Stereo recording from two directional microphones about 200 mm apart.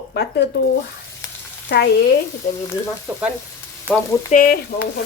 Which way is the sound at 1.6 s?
60° left (ahead or behind).